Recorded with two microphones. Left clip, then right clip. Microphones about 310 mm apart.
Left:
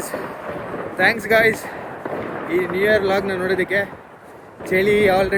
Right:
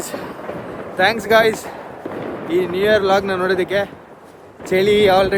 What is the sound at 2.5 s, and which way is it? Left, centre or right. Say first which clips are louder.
Speech: right 2 dB; centre.